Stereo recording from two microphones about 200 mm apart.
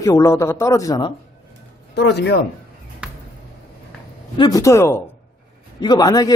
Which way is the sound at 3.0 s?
5° right (ahead or behind).